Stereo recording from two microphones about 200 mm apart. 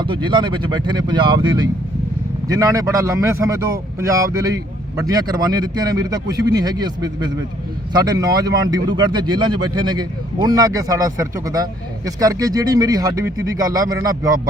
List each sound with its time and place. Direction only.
0.0 s speech: 25° right (ahead or behind)